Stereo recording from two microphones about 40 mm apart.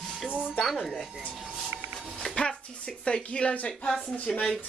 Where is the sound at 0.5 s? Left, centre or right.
Centre.